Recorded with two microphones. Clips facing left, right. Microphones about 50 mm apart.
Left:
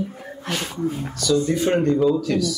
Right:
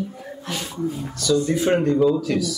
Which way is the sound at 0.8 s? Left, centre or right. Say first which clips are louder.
Even; left.